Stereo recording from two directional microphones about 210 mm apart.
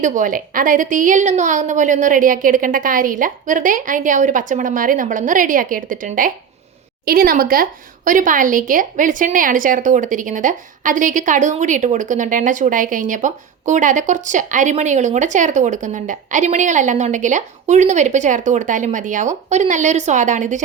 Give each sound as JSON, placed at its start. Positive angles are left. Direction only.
{"t": 0.0, "sound": "speech", "side_deg": -40}